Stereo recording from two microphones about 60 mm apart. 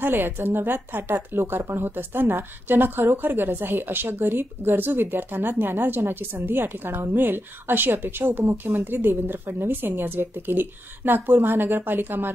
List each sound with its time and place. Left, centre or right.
0.0 s a woman's voice: right